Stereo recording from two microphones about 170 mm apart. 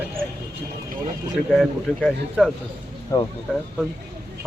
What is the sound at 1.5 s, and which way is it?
Speech, centre (ahead or behind).